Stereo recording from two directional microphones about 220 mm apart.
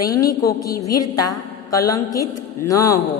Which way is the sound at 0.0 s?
15° left (ahead or behind).